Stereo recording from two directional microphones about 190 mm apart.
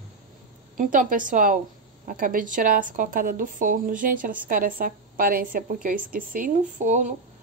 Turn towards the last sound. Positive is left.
turn(degrees=-40)  # may be behind; listen again after turning